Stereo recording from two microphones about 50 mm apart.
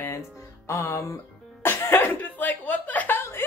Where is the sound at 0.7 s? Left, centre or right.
Left.